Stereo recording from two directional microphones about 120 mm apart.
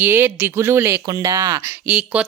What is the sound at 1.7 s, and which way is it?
Speech, 10° right (ahead or behind).